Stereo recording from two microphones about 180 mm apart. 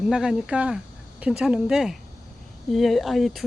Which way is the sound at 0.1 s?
5° right (ahead or behind).